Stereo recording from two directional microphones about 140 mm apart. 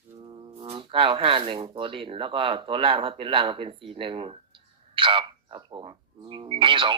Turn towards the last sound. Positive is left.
turn(degrees=-40)  # may be behind; listen again after turning